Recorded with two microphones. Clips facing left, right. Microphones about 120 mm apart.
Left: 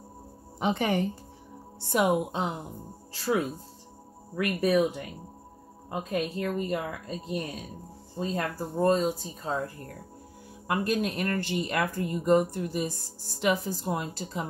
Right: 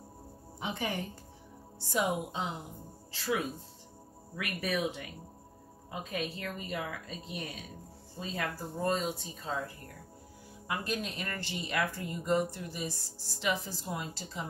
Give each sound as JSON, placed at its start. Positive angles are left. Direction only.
{"t": 0.6, "sound": "speech", "side_deg": 70}
{"t": 4.4, "sound": "speech", "side_deg": 40}
{"t": 10.7, "sound": "speech", "side_deg": 55}